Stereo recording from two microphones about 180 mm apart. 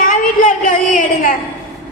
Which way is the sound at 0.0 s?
50° left (ahead or behind).